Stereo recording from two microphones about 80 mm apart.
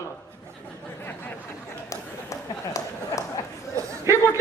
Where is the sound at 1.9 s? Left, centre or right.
Left.